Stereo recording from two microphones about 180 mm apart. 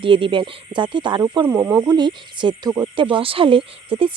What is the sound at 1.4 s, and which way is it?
Speech, 15° right (ahead or behind).